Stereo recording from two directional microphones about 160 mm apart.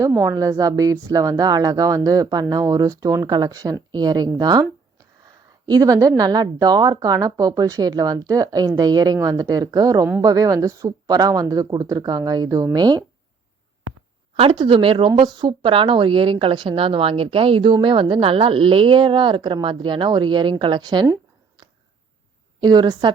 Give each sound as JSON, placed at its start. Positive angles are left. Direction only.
{"t": 0.0, "sound": "speech", "side_deg": -15}
{"t": 5.6, "sound": "speech", "side_deg": -25}
{"t": 14.3, "sound": "speech", "side_deg": -30}
{"t": 22.6, "sound": "speech", "side_deg": -25}